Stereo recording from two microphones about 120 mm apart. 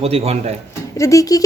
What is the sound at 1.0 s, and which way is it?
Speech, 25° left (ahead or behind).